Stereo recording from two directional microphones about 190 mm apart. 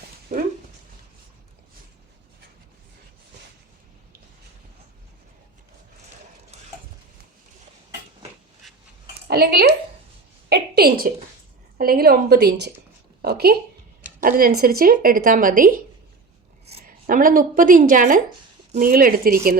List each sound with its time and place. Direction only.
0.3 s speech: 40° right (ahead or behind)
6.5 s a sound: 35° right (ahead or behind)
8.6 s cutlery: centre (ahead or behind)
9.2 s a sound: 55° right (ahead or behind)
11.8 s a woman's voice: 50° right (ahead or behind)
16.8 s speech: 45° right (ahead or behind)